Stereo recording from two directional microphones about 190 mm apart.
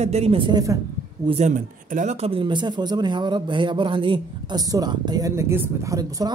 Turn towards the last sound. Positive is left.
turn(degrees=-20)  # may be behind; listen again after turning